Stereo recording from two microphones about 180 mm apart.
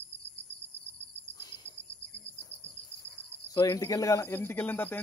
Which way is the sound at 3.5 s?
20° left (ahead or behind).